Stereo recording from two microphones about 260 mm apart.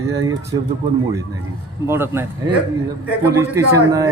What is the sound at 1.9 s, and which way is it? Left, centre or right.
Speech, centre.